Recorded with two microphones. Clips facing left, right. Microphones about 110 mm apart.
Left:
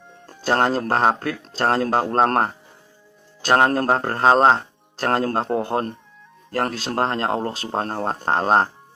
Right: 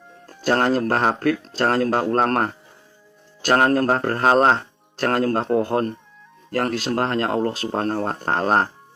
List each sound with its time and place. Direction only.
0.4 s speech: 30° left (ahead or behind)